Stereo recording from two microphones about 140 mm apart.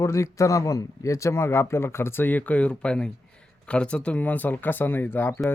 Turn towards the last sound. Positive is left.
turn(degrees=15)  # may be behind; listen again after turning